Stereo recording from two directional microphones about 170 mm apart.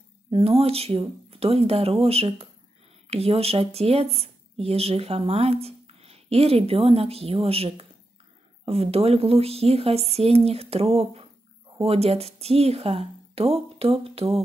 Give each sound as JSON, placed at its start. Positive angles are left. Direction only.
{"t": 0.3, "sound": "speech", "side_deg": -35}